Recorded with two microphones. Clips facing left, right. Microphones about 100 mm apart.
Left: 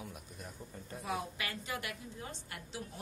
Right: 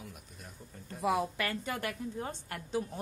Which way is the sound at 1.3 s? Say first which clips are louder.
Right 5 dB; 50° right (ahead or behind).